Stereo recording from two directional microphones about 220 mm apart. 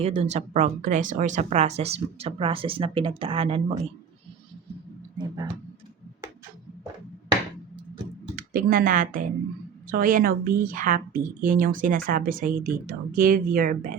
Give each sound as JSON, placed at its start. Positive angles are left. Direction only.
{"t": 0.0, "sound": "speech", "side_deg": -30}
{"t": 8.4, "sound": "speech", "side_deg": -40}